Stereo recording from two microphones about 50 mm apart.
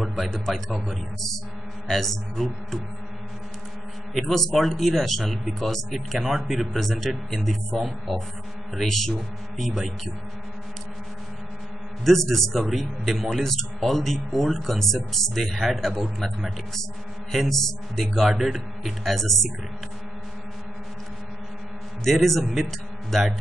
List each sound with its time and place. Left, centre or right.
0.0 s speech: centre
1.9 s speech: centre
4.1 s speech: centre
12.0 s speech: centre
22.0 s speech: centre